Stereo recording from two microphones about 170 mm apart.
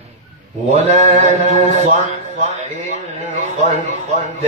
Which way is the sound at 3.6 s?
40° right (ahead or behind).